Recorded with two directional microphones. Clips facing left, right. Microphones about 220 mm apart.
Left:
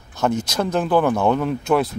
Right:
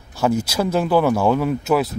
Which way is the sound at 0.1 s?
10° right (ahead or behind).